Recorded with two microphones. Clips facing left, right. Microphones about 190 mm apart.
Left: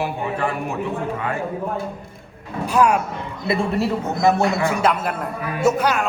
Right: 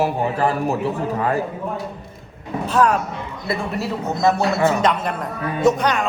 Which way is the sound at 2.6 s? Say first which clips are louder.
Even; 10° left (ahead or behind).